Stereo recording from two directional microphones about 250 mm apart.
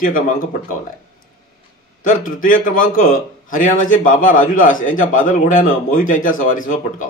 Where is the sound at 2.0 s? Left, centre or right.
Left.